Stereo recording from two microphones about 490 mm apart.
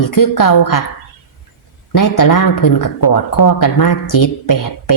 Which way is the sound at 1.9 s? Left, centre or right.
Left.